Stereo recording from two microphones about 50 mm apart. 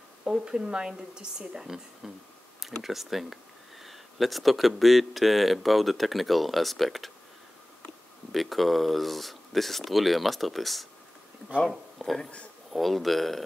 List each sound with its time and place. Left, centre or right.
0.2 s speech: centre
8.3 s speech: centre
12.0 s speech: centre